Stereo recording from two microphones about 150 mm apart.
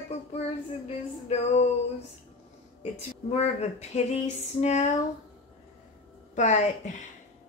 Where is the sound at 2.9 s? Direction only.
45° left (ahead or behind).